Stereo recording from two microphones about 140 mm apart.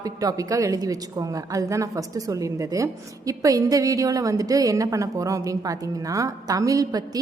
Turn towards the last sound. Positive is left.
turn(degrees=-25)  # may be behind; listen again after turning